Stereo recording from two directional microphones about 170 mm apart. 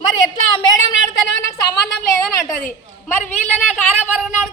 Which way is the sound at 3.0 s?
10° left (ahead or behind).